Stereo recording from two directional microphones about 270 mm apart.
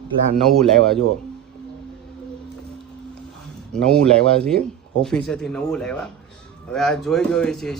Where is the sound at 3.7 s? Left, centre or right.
Centre.